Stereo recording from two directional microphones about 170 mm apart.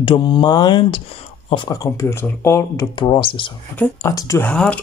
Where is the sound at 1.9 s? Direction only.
15° left (ahead or behind).